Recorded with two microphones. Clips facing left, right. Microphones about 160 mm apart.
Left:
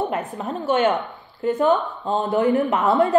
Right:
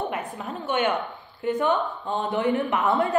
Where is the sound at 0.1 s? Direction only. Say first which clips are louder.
Left 5 dB; 40° left (ahead or behind).